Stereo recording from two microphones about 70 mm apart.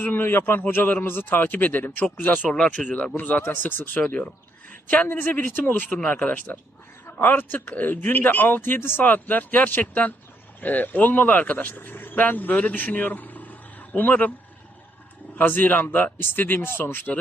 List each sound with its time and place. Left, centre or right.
0.0 s speech: left
2.5 s speech: centre
15.4 s speech: left